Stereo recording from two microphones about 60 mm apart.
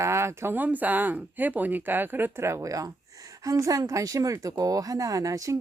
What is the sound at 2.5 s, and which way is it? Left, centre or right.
Speech, right.